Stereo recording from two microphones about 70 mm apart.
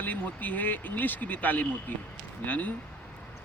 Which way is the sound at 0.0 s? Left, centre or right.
Left.